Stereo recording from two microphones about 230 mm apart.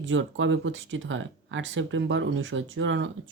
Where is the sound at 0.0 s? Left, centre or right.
Right.